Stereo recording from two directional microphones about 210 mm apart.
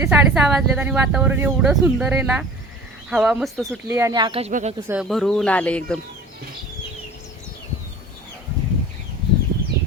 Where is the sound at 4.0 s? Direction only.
15° right (ahead or behind).